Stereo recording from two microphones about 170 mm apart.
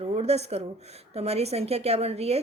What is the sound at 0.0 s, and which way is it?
A woman's voice, 40° right (ahead or behind).